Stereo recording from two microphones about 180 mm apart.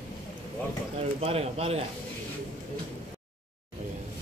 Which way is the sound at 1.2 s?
35° right (ahead or behind).